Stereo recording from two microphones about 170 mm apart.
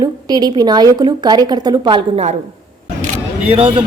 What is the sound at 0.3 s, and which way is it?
A woman's voice, 25° right (ahead or behind).